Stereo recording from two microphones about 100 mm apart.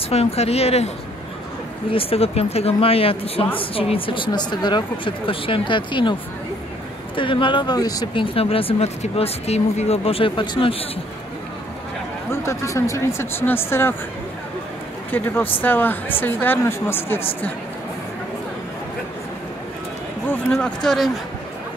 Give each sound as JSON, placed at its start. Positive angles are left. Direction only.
{"t": 0.1, "sound": "a woman's voice", "side_deg": 90}
{"t": 1.9, "sound": "speech", "side_deg": 70}
{"t": 7.2, "sound": "speech", "side_deg": 55}
{"t": 7.7, "sound": "speech", "side_deg": 40}
{"t": 8.1, "sound": "speech", "side_deg": 65}
{"t": 12.3, "sound": "speech", "side_deg": 30}
{"t": 15.0, "sound": "speech", "side_deg": 20}
{"t": 20.5, "sound": "speech", "side_deg": 5}